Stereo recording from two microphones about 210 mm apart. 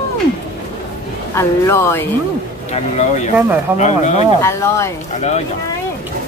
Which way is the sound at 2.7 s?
30° left (ahead or behind).